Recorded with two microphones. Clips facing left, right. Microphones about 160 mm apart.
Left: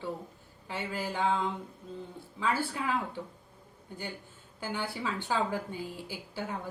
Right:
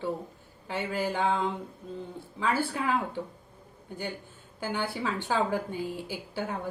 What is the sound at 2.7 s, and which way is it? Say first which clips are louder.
Speech: right 4 dB; 55° right (ahead or behind).